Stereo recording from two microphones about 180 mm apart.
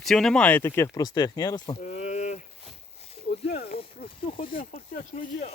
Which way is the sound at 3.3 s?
60° left (ahead or behind).